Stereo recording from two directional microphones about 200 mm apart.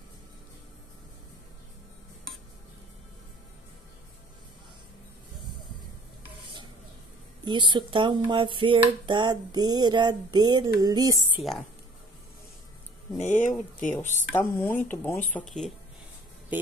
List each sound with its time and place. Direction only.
7.4 s a sound: 20° right (ahead or behind)
11.3 s speech: centre (ahead or behind)
13.2 s speech: 35° left (ahead or behind)
14.3 s speech: 10° left (ahead or behind)